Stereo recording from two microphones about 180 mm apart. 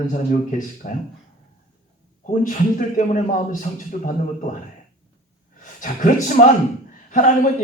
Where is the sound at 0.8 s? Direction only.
45° left (ahead or behind).